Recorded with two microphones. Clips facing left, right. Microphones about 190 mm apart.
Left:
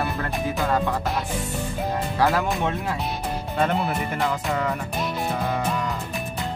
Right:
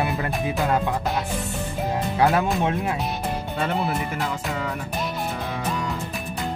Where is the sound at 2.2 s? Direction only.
20° right (ahead or behind).